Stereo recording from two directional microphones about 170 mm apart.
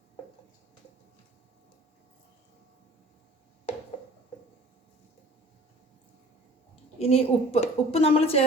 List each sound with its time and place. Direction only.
7.0 s a woman's voice: 35° left (ahead or behind)